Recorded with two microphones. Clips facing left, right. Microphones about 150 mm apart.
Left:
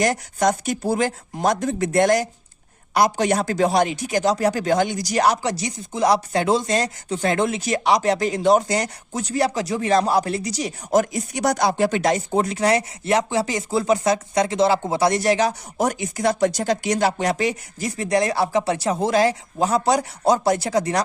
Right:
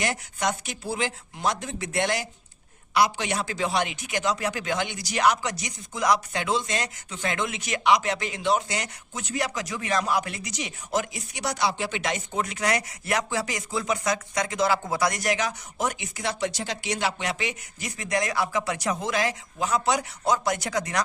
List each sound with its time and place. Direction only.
0.0 s a man's voice: 40° left (ahead or behind)